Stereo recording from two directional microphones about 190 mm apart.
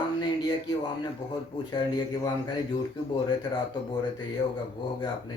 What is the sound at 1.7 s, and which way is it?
Speech, 20° left (ahead or behind).